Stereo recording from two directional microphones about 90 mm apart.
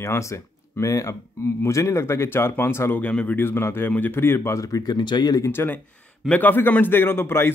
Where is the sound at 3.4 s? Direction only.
25° left (ahead or behind); by 5.4 s 55° left (ahead or behind).